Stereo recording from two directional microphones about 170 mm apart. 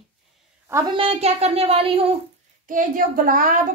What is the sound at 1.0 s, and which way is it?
A child's voice, 35° right (ahead or behind).